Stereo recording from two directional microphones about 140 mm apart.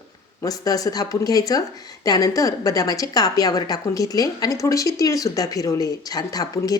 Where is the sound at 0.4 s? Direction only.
25° left (ahead or behind).